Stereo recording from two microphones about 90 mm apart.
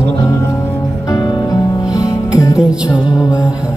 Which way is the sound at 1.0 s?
45° left (ahead or behind).